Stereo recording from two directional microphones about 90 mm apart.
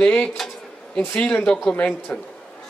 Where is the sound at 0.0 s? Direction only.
10° left (ahead or behind).